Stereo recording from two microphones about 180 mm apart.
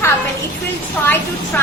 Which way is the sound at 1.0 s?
10° left (ahead or behind).